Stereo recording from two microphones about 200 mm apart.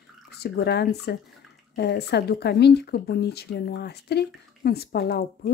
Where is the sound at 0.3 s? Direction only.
55° left (ahead or behind).